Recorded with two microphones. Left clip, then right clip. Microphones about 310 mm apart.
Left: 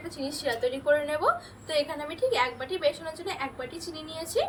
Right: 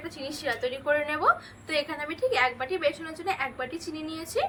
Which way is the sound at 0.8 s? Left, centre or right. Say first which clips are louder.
Right 1 dB; centre.